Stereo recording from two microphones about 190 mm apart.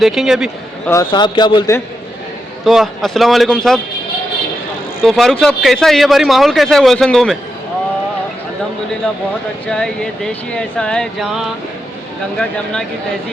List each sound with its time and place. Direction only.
0.0 s speech: centre (ahead or behind)
0.9 s a man's voice: 20° left (ahead or behind)
2.6 s speech: centre (ahead or behind)
5.0 s speech: centre (ahead or behind)
9.6 s speech: 5° left (ahead or behind)